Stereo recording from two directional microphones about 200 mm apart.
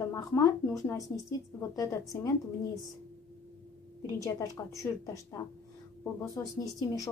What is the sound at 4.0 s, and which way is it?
A woman's voice, 15° left (ahead or behind).